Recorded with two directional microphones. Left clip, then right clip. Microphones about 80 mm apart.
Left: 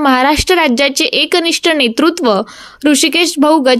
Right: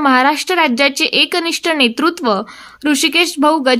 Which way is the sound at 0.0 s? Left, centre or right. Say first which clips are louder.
Left 1 dB; left.